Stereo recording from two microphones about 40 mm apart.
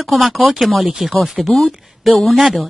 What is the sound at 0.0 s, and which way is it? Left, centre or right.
Speech, centre.